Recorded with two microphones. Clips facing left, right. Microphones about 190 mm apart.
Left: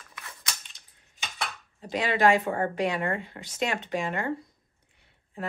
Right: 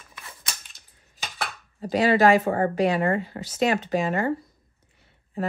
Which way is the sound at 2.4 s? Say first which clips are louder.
Right 5 dB; 35° right (ahead or behind).